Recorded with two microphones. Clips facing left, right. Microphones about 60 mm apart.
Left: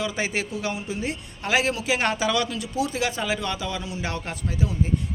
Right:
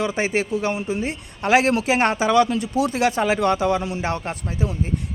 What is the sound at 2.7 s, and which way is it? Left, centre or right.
Speech, right.